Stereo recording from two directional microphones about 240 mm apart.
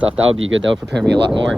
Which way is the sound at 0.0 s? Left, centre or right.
Right.